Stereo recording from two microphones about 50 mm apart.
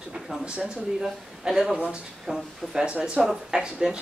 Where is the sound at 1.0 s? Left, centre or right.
Centre.